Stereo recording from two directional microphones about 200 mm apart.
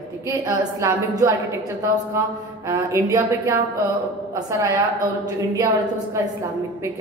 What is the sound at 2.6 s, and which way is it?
Speech, 15° right (ahead or behind).